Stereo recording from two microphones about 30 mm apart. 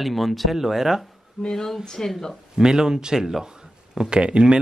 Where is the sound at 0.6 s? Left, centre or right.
Centre.